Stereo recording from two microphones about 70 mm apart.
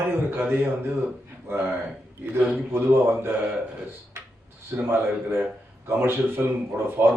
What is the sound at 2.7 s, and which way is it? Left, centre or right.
Speech, right.